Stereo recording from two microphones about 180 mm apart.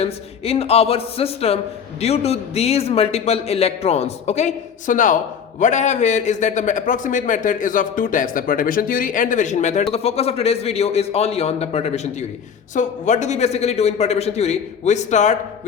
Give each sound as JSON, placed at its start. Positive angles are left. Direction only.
{"t": 0.0, "sound": "a man's voice", "side_deg": 35}